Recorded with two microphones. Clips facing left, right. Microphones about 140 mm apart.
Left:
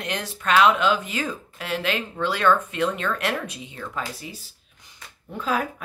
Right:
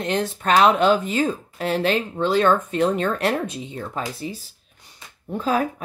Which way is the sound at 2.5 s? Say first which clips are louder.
Right 2 dB; 35° right (ahead or behind).